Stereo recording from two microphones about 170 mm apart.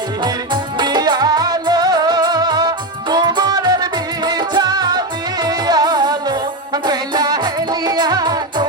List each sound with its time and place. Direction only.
0.5 s music: 25° right (ahead or behind)